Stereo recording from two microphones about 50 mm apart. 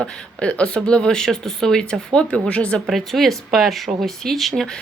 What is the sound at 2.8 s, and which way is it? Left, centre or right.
Speech, centre.